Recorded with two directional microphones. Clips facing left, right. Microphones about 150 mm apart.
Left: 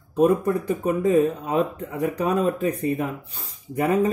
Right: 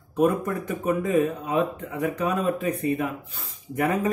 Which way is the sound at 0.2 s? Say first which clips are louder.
Left 3 dB; 30° left (ahead or behind).